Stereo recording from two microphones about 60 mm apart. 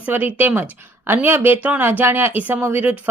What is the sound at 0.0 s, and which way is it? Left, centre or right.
Speech, right.